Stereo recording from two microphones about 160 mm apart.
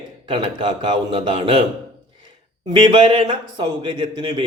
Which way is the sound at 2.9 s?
30° right (ahead or behind).